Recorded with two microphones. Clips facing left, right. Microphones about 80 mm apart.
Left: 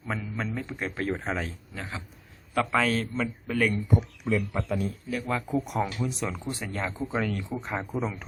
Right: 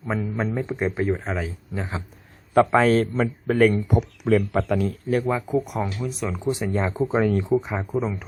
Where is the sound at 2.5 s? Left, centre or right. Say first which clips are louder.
Right 8 dB; right.